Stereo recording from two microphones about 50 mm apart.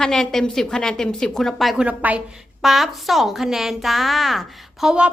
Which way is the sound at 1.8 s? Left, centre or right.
Right.